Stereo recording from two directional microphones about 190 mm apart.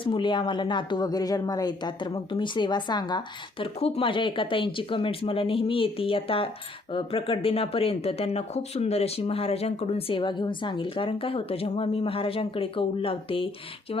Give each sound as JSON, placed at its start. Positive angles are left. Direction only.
{"t": 0.0, "sound": "speech", "side_deg": 25}